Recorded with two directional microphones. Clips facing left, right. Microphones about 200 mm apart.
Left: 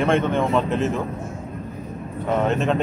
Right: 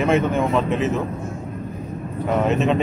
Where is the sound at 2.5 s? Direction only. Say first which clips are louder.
Right 4 dB; centre (ahead or behind).